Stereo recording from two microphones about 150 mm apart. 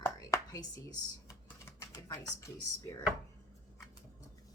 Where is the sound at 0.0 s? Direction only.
20° left (ahead or behind).